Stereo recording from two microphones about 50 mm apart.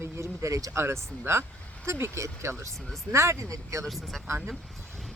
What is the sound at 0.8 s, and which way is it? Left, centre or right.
Speech, right.